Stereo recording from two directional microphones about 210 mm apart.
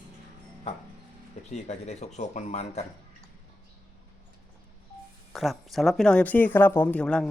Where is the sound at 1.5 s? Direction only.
35° left (ahead or behind).